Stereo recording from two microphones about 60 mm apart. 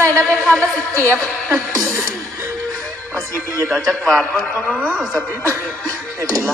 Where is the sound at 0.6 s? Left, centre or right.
Right.